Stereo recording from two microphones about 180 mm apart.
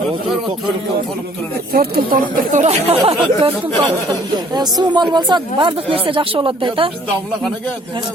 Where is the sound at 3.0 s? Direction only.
30° right (ahead or behind).